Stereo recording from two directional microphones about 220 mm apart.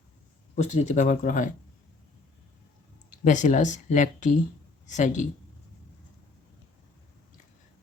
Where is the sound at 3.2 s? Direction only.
35° left (ahead or behind).